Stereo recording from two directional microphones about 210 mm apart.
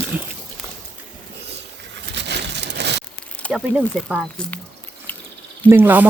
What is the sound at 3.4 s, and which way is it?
Speech, centre (ahead or behind).